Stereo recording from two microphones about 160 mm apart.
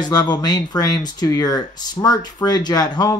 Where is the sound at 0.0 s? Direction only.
25° left (ahead or behind).